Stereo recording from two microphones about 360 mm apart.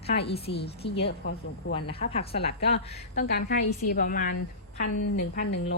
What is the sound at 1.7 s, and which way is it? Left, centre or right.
A woman's voice, centre.